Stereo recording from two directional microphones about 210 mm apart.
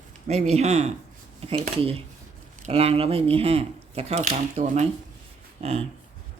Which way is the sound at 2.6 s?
30° right (ahead or behind).